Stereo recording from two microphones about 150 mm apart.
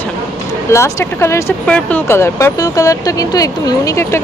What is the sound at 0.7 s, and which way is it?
Speech, 20° left (ahead or behind).